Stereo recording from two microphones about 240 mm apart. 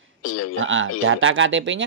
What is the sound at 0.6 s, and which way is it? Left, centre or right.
Speech, right.